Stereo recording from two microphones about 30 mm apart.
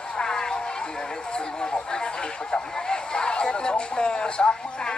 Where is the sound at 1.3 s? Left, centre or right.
Left.